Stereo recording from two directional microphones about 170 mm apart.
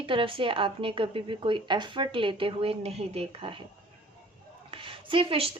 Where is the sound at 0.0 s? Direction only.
30° right (ahead or behind).